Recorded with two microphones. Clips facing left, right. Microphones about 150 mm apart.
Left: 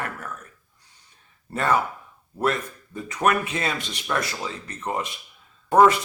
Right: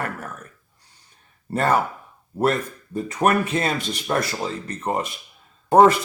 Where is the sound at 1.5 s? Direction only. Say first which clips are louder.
Right 3 dB; 35° right (ahead or behind).